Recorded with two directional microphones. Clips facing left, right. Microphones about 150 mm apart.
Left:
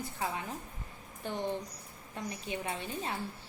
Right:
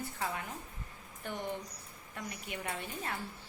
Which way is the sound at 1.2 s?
30° left (ahead or behind).